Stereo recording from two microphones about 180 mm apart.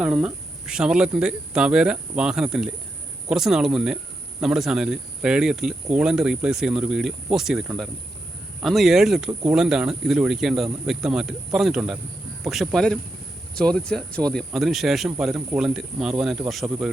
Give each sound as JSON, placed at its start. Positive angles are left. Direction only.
{"t": 0.0, "sound": "speech", "side_deg": -5}